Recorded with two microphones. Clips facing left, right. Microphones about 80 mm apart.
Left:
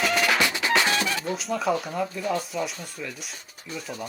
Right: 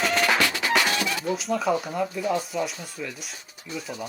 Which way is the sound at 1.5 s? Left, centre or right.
Centre.